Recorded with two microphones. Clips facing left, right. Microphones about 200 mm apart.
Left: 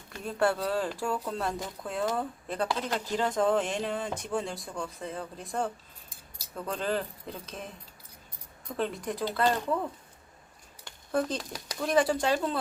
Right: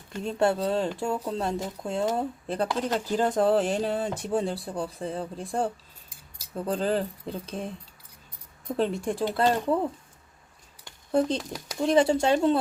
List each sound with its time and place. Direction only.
0.2 s speech: 25° right (ahead or behind)
8.7 s speech: 30° right (ahead or behind)
11.3 s speech: centre (ahead or behind)
11.8 s speech: 25° right (ahead or behind)